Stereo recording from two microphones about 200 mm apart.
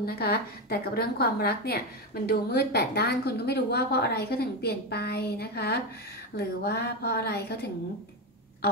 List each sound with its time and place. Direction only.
0.0 s a woman's voice: 50° left (ahead or behind)